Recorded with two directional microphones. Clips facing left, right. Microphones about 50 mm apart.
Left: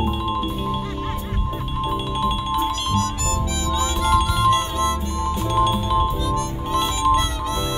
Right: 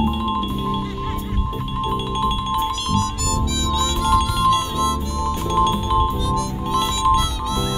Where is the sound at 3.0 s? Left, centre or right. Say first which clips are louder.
Right 1 dB; left.